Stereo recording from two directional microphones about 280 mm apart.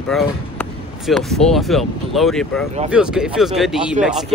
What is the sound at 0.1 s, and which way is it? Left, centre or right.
Speech, centre.